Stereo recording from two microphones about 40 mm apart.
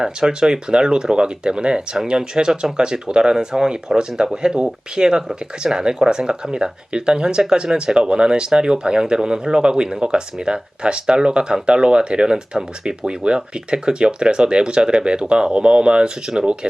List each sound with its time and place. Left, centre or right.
0.0 s speech: centre